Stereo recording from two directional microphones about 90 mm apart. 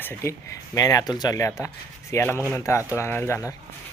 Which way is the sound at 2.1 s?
40° left (ahead or behind).